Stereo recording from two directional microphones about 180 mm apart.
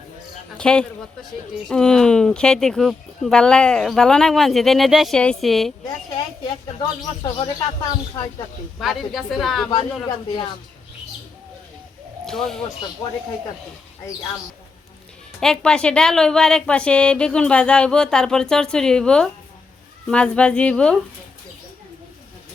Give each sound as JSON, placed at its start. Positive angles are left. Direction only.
{"t": 0.5, "sound": "speech", "side_deg": 5}
{"t": 7.2, "sound": "speech", "side_deg": 25}
{"t": 8.8, "sound": "speech", "side_deg": 0}
{"t": 9.7, "sound": "speech", "side_deg": 25}
{"t": 12.2, "sound": "speech", "side_deg": 0}
{"t": 15.4, "sound": "speech", "side_deg": 5}